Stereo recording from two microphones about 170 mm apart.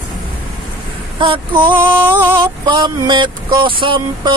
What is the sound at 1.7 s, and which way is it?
Music, 10° right (ahead or behind).